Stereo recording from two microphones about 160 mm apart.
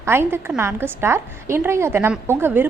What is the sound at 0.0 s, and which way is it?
A woman's voice, 15° right (ahead or behind).